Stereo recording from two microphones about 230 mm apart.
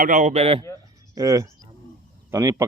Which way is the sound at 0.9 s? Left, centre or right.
Centre.